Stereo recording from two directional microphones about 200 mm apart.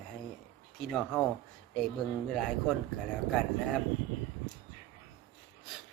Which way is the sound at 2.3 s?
Centre (ahead or behind).